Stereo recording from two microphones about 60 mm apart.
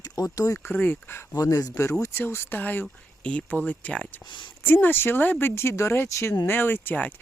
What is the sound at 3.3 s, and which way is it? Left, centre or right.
Speech, left.